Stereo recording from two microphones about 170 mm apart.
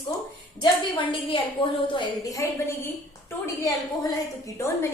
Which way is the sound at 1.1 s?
30° left (ahead or behind).